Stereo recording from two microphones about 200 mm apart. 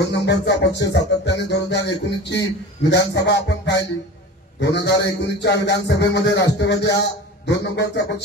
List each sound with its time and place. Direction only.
0.0 s a man's voice: 60° left (ahead or behind)